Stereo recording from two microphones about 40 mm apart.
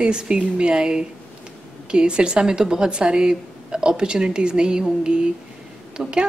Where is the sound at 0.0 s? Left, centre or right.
Right.